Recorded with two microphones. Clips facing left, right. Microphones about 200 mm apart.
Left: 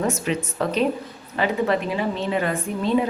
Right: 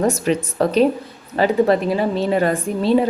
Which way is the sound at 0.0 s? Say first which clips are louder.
Right 5 dB; 40° right (ahead or behind).